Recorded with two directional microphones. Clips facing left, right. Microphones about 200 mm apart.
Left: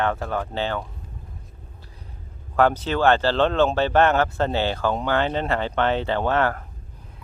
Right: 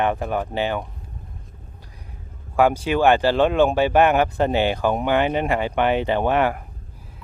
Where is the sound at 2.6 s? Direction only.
10° right (ahead or behind).